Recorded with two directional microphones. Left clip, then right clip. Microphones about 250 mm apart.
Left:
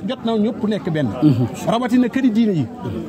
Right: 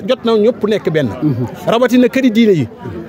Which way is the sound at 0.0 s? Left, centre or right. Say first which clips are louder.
Right 10 dB; right.